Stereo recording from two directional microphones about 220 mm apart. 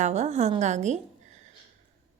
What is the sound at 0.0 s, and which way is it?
A woman's voice, 30° right (ahead or behind).